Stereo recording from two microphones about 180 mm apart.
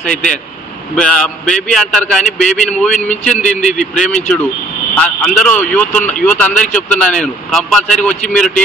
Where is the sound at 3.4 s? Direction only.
40° left (ahead or behind).